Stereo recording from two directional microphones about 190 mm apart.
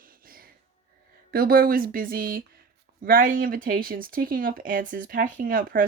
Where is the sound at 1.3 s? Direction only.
50° right (ahead or behind).